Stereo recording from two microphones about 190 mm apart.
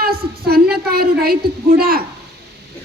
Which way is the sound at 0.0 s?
55° right (ahead or behind).